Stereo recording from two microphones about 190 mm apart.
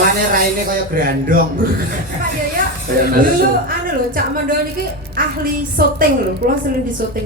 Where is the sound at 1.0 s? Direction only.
50° right (ahead or behind).